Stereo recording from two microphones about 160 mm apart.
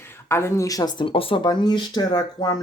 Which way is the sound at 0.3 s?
15° left (ahead or behind).